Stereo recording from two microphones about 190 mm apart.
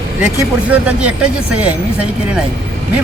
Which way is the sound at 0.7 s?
5° right (ahead or behind).